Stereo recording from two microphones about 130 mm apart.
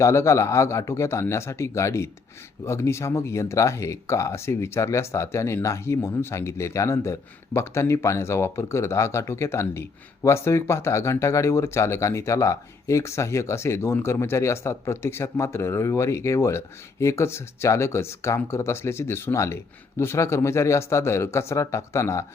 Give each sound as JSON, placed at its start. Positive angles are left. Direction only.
{"t": 0.0, "sound": "speech", "side_deg": 20}